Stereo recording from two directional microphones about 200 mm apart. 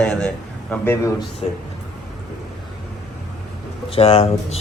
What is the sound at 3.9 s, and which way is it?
Speech, 30° left (ahead or behind).